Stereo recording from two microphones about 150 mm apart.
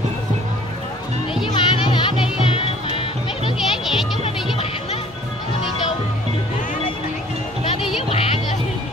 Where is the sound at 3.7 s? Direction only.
Centre (ahead or behind).